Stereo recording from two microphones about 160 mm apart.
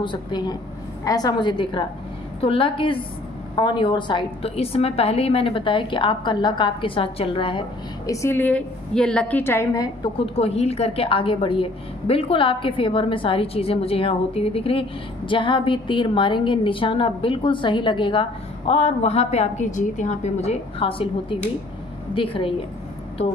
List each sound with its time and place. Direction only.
0.0 s a woman's voice: 30° left (ahead or behind)
8.1 s a woman's voice: 15° left (ahead or behind)
10.1 s a woman's voice: 35° left (ahead or behind)